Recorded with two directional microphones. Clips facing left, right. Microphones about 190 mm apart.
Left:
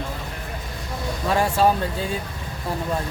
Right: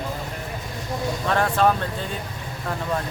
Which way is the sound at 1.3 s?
10° left (ahead or behind).